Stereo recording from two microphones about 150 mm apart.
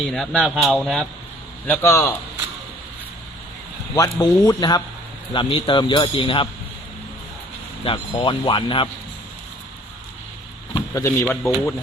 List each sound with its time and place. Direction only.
0.1 s speech: 5° left (ahead or behind)
1.6 s a man's voice: 15° left (ahead or behind)
3.9 s speech: 25° left (ahead or behind)
7.9 s speech: 35° left (ahead or behind)
10.8 s speech: 20° left (ahead or behind)